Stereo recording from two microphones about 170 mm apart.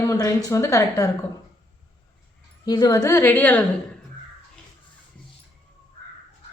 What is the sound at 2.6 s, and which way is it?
A woman's voice, 25° left (ahead or behind).